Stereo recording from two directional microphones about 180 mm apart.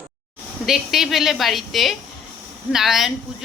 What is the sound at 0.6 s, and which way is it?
A woman's voice, centre (ahead or behind).